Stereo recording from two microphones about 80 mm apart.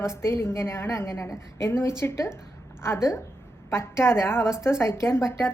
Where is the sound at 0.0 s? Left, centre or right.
Left.